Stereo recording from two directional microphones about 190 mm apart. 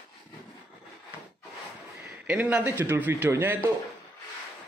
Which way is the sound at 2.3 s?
5° right (ahead or behind).